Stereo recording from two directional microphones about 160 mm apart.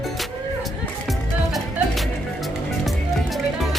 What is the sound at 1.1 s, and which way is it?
Music, centre (ahead or behind).